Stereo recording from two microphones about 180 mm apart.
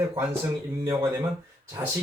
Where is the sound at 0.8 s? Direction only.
15° right (ahead or behind).